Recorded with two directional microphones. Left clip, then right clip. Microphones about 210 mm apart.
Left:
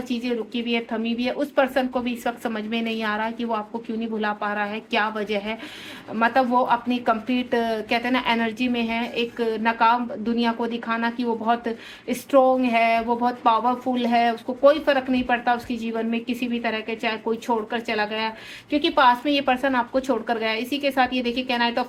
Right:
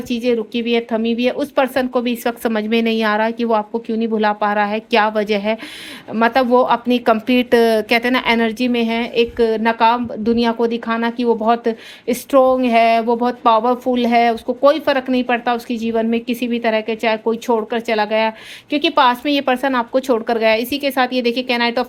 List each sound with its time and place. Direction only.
0.1 s speech: 45° right (ahead or behind)